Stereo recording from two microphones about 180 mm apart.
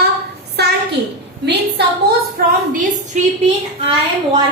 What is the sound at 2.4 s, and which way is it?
Speech, 50° right (ahead or behind).